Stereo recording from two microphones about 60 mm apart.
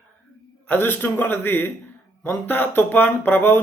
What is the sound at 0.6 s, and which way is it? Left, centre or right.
Speech, left.